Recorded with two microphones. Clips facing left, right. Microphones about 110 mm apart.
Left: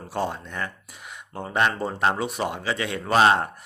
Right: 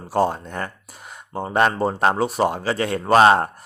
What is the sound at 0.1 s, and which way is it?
Speech, 40° right (ahead or behind).